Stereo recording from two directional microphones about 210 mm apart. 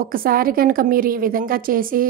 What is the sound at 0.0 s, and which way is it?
A woman's voice, 45° right (ahead or behind).